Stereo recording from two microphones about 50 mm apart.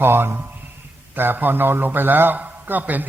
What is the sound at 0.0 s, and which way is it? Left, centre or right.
A man's voice, right.